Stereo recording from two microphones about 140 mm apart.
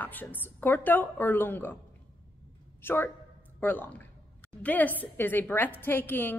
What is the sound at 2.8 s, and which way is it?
A woman's voice, 15° left (ahead or behind).